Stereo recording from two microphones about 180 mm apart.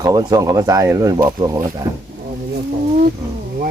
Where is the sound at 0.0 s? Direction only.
20° right (ahead or behind).